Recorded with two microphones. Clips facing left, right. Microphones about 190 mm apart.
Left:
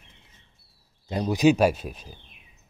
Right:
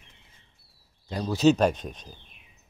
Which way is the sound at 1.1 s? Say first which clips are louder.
Left 1 dB; 20° left (ahead or behind).